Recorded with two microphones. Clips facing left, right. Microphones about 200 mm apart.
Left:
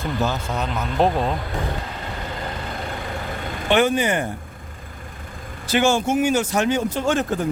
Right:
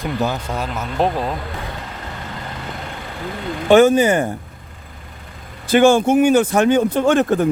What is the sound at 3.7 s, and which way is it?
Speech, 45° right (ahead or behind).